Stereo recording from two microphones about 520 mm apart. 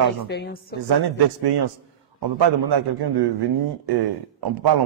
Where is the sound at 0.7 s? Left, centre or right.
Right.